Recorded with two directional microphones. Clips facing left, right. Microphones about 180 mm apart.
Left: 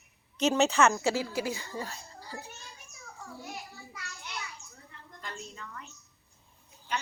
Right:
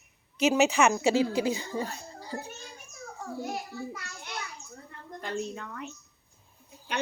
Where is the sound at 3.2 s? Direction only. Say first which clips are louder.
Right 8 dB; 55° right (ahead or behind).